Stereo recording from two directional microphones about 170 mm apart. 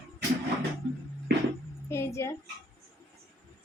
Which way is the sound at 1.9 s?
15° left (ahead or behind).